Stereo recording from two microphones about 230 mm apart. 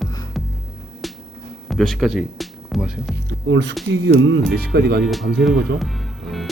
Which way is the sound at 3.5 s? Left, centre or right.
Right.